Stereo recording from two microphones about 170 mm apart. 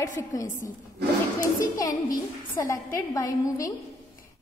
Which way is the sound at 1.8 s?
20° left (ahead or behind).